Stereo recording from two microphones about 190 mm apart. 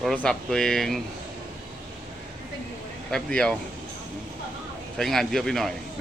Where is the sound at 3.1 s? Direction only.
5° left (ahead or behind).